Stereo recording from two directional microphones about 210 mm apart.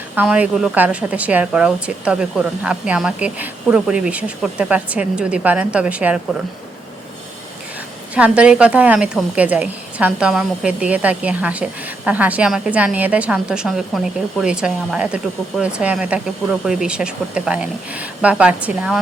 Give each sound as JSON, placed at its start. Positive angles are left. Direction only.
{"t": 0.2, "sound": "a woman's voice", "side_deg": -5}
{"t": 8.1, "sound": "a woman's voice", "side_deg": -5}